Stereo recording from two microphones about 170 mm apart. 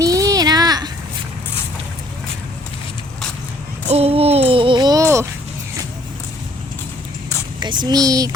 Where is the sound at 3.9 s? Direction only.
35° right (ahead or behind); by 5.2 s 20° right (ahead or behind).